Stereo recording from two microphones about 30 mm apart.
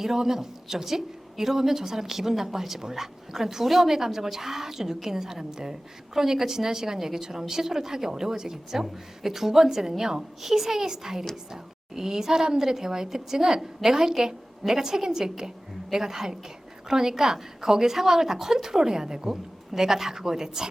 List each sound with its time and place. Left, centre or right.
0.0 s a woman's voice: centre